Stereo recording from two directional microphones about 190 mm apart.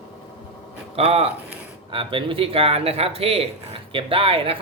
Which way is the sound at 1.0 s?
30° right (ahead or behind).